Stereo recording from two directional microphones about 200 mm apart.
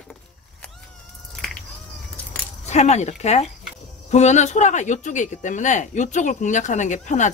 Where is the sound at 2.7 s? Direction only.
35° left (ahead or behind).